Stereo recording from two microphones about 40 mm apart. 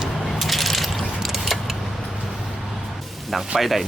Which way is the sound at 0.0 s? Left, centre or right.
Centre.